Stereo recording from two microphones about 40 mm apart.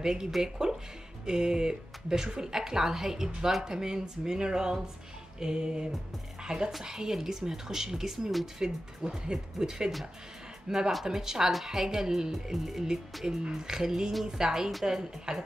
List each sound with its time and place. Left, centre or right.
0.0 s speech: centre
5.4 s music: right
6.4 s speech: centre
12.5 s music: centre
13.2 s speech: centre